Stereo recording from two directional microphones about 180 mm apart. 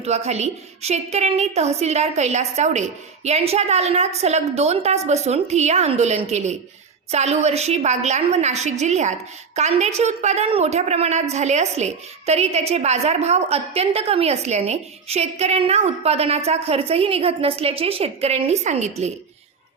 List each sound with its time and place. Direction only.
0.0 s a woman's voice: 35° right (ahead or behind)